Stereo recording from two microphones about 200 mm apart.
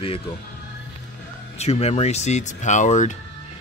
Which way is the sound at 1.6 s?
30° left (ahead or behind).